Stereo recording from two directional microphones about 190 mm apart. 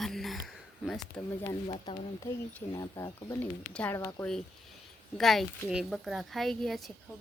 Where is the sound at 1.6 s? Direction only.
30° left (ahead or behind).